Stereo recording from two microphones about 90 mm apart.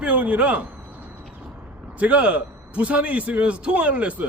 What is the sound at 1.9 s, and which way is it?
Speech, 15° right (ahead or behind).